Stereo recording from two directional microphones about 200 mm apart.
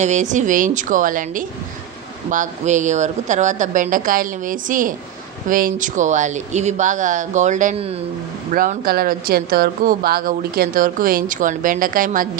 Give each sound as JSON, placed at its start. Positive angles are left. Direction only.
{"t": 0.0, "sound": "speech", "side_deg": -35}
{"t": 8.5, "sound": "speech", "side_deg": -45}